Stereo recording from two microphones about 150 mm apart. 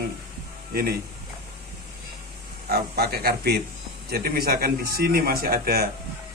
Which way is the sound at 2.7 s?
90° right.